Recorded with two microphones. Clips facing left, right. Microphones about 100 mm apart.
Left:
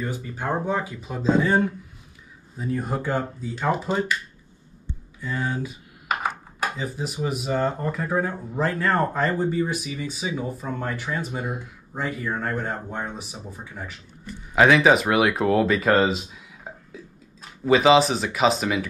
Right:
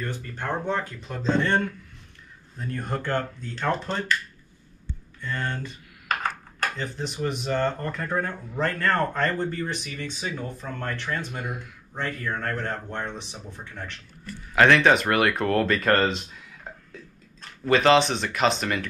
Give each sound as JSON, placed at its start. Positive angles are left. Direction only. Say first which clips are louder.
{"t": 0.0, "sound": "speech", "louder": "left 3 dB", "side_deg": 10}
{"t": 5.2, "sound": "speech", "louder": "left 3 dB", "side_deg": 5}
{"t": 11.4, "sound": "speech", "louder": "left 3 dB", "side_deg": 20}
{"t": 11.9, "sound": "speech", "louder": "left 2 dB", "side_deg": 10}